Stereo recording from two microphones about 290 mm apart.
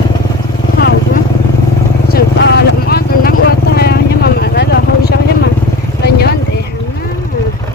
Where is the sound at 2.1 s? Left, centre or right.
Left.